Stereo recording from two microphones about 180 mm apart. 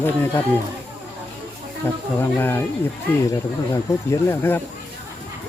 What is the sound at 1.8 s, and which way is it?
Speech, 10° left (ahead or behind).